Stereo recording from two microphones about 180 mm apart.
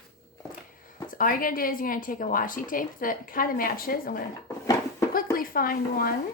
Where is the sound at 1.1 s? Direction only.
50° left (ahead or behind).